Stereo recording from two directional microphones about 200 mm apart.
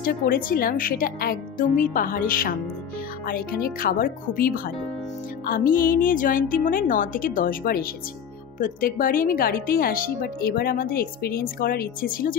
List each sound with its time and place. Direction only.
0.0 s speech: 45° left (ahead or behind)